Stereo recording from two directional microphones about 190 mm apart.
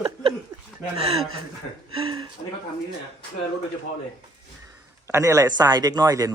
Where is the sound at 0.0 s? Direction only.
30° right (ahead or behind).